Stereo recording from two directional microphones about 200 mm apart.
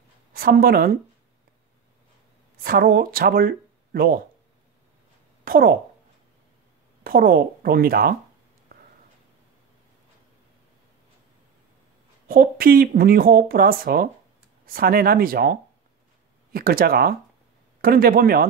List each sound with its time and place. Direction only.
0.3 s a woman's voice: 45° right (ahead or behind)
2.6 s speech: 45° right (ahead or behind)
5.4 s speech: 45° right (ahead or behind)
7.0 s speech: 45° right (ahead or behind)
12.3 s speech: 45° right (ahead or behind)